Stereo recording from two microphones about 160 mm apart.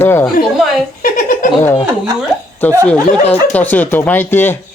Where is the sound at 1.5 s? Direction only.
15° left (ahead or behind).